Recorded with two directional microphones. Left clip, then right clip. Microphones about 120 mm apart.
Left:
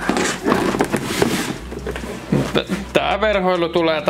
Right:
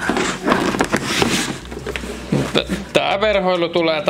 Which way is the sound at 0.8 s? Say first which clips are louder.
Right 1 dB; 25° right (ahead or behind).